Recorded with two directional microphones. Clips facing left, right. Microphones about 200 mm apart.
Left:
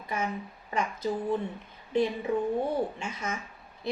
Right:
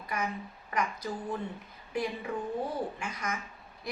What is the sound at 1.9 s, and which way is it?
Speech, 25° left (ahead or behind).